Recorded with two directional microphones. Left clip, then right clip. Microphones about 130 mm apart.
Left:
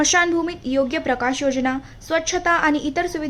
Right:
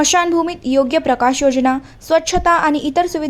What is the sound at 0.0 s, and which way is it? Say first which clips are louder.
A woman's voice: right 4 dB; 30° right (ahead or behind).